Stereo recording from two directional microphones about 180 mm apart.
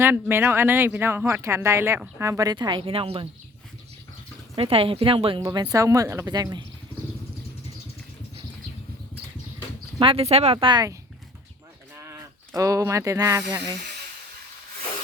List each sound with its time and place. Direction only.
0.0 s speech: 10° right (ahead or behind); by 3.2 s 30° right (ahead or behind)
4.5 s speech: 30° right (ahead or behind)
10.0 s speech: 30° right (ahead or behind)
11.9 s speech: 15° right (ahead or behind)